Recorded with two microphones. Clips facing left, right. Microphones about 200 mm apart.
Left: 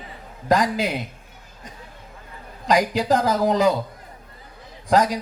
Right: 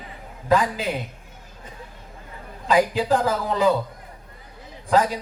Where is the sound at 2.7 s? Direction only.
40° left (ahead or behind).